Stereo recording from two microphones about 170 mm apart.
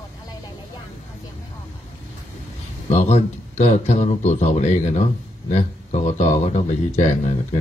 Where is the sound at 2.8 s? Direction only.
40° left (ahead or behind).